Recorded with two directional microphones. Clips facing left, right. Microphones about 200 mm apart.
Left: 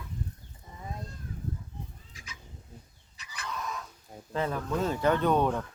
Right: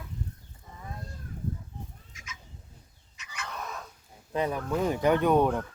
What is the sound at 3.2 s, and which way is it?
Chicken, 35° left (ahead or behind).